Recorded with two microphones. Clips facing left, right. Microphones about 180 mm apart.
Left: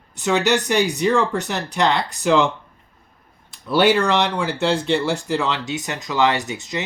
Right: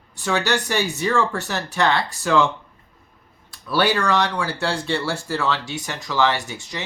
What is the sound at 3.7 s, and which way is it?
Speech, 20° left (ahead or behind).